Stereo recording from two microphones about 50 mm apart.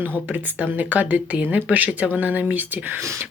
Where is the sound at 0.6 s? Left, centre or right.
Right.